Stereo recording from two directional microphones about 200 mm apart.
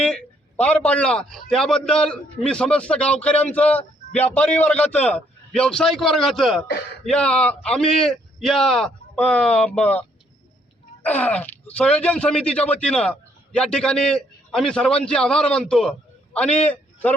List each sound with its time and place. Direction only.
0.0 s a man's voice: 5° left (ahead or behind)